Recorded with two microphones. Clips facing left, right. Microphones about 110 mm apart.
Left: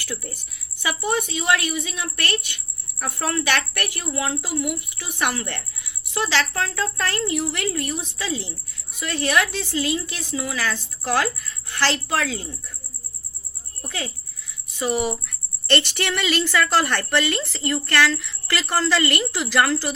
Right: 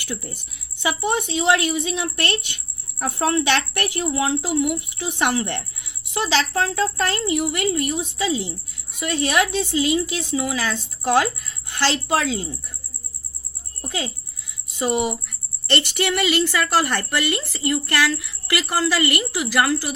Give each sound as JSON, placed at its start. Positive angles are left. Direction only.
{"t": 0.0, "sound": "a woman's voice", "side_deg": -20}
{"t": 13.8, "sound": "a woman's voice", "side_deg": -20}